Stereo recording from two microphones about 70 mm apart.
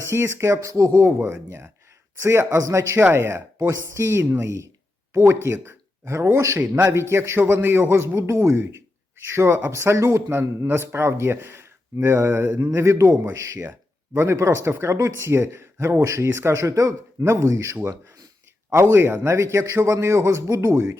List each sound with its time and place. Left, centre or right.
0.0 s a man's voice: right
1.0 s a man's voice: right